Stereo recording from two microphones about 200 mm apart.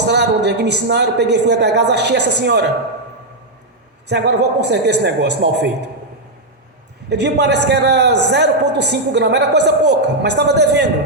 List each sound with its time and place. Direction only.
0.0 s a man's voice: 60° right (ahead or behind)
4.1 s a man's voice: 60° right (ahead or behind)
7.1 s a man's voice: 60° right (ahead or behind)